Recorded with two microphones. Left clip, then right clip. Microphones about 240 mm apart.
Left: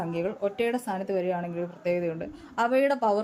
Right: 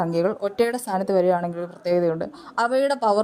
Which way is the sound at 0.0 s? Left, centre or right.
Right.